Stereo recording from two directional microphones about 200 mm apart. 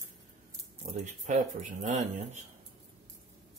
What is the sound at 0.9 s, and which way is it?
Speech, 35° right (ahead or behind).